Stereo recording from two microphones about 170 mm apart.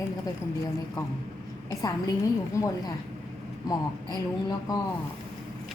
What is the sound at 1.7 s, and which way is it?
A woman's voice, 20° left (ahead or behind).